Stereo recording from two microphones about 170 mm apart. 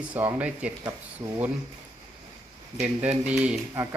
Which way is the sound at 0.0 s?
10° right (ahead or behind).